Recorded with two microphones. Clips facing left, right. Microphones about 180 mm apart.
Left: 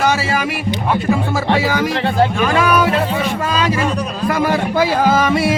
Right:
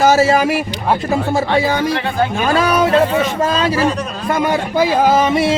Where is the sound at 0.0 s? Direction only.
40° right (ahead or behind).